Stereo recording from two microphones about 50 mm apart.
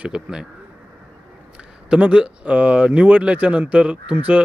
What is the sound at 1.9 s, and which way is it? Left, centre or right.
Speech, right.